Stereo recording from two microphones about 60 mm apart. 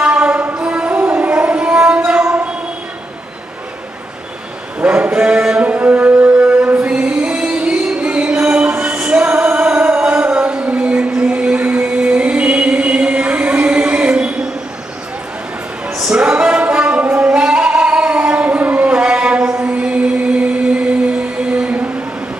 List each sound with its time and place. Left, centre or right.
0.0 s music: centre
4.7 s music: right
10.6 s a sound: right
16.0 s singing: centre
21.4 s music: centre